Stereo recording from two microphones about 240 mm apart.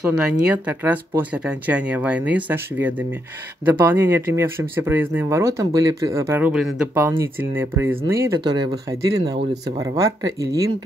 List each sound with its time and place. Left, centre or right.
0.2 s speech: centre